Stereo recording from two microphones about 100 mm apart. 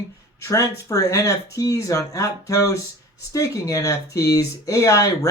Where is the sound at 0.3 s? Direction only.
30° left (ahead or behind).